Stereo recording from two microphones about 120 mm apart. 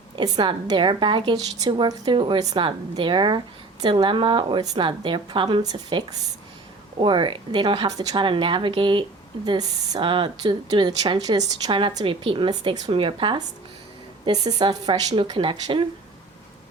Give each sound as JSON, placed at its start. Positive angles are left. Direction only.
{"t": 0.2, "sound": "a woman's voice", "side_deg": -40}
{"t": 14.4, "sound": "a woman's voice", "side_deg": -35}